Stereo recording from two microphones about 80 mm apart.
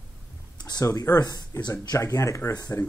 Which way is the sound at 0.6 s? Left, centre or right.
Left.